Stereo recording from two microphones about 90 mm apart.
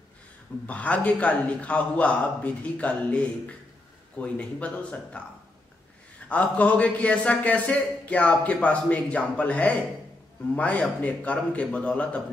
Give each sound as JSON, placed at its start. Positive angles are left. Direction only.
{"t": 0.7, "sound": "a man's voice", "side_deg": 15}
{"t": 6.2, "sound": "a man's voice", "side_deg": 15}